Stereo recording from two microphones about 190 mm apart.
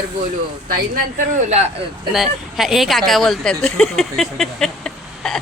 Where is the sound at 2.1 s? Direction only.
Centre (ahead or behind).